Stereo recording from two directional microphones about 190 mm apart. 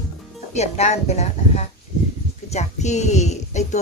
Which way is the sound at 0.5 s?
35° left (ahead or behind).